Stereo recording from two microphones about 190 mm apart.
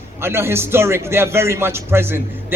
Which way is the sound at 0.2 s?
15° right (ahead or behind).